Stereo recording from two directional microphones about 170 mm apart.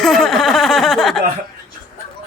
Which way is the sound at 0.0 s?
Centre (ahead or behind).